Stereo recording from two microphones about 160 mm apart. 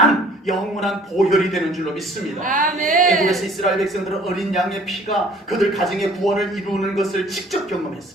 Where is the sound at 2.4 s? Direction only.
55° right (ahead or behind).